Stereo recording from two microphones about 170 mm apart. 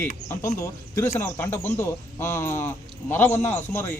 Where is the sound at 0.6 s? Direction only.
20° left (ahead or behind).